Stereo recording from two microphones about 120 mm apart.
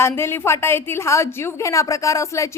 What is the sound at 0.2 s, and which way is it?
A woman's voice, 20° left (ahead or behind).